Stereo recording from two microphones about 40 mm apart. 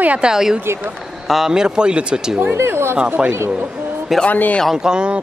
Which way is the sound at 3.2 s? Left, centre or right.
Right.